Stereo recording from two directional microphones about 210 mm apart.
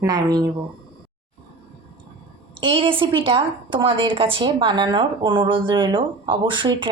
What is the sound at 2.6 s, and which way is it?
A woman's voice, 25° right (ahead or behind).